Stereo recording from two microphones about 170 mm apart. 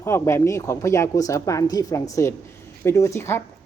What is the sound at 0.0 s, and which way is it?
Speech, 15° left (ahead or behind).